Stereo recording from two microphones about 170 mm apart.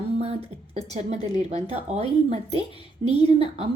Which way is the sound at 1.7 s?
40° right (ahead or behind).